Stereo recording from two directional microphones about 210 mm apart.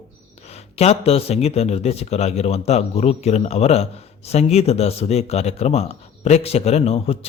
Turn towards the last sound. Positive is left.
turn(degrees=30)  # may be behind; listen again after turning